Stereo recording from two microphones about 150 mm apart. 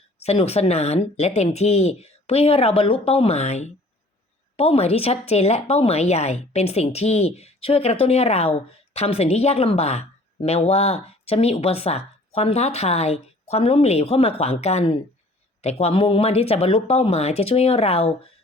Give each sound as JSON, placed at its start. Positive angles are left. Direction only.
{"t": 0.2, "sound": "a woman's voice", "side_deg": 45}